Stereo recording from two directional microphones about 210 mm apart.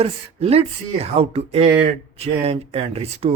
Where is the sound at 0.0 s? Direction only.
30° right (ahead or behind).